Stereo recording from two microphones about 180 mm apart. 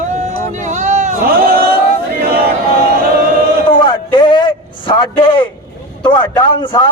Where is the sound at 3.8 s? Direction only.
25° left (ahead or behind).